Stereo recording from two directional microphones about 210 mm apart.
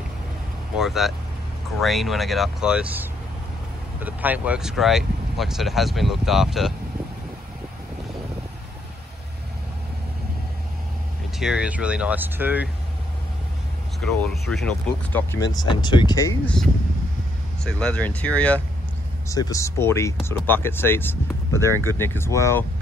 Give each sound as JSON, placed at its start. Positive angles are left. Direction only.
{"t": 0.7, "sound": "speech", "side_deg": 0}
{"t": 11.3, "sound": "speech", "side_deg": -5}
{"t": 14.0, "sound": "speech", "side_deg": 0}
{"t": 15.5, "sound": "speech", "side_deg": 20}
{"t": 17.6, "sound": "speech", "side_deg": 5}